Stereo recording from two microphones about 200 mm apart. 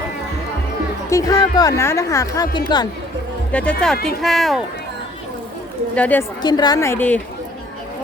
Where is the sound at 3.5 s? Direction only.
5° left (ahead or behind).